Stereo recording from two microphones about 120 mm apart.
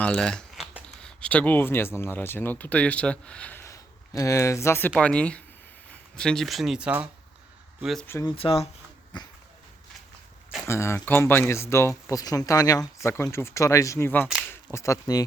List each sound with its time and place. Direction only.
0.0 s speech: 5° left (ahead or behind)
3.6 s speech: 25° left (ahead or behind); by 8.0 s centre (ahead or behind)
8.2 s speech: 45° left (ahead or behind)
9.1 s a sound: 40° left (ahead or behind)
10.7 s speech: 20° left (ahead or behind)